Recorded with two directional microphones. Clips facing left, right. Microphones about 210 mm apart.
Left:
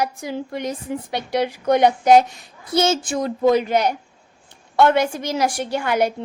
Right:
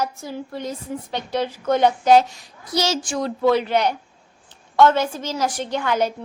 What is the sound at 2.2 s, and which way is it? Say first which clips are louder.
Speech: left 3 dB; 55° left (ahead or behind).